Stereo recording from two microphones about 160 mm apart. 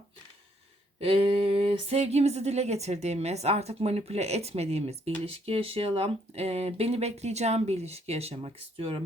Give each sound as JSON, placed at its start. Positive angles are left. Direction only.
{"t": 0.9, "sound": "speech", "side_deg": -35}